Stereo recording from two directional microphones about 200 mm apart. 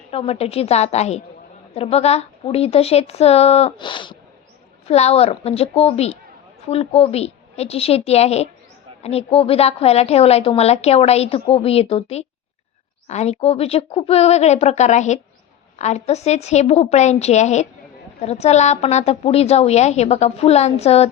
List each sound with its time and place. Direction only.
0.1 s a woman's voice: 30° left (ahead or behind)